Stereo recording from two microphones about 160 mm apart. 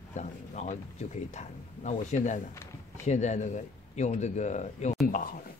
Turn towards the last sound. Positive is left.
turn(degrees=60)  # may be behind; listen again after turning